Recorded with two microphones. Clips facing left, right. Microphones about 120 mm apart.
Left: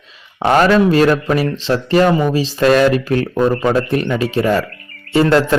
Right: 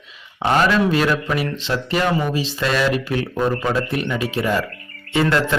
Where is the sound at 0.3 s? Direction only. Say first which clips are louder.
Left 5 dB; 35° left (ahead or behind).